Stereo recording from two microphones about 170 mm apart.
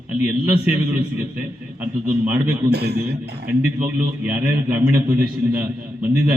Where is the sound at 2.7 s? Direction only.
70° right (ahead or behind).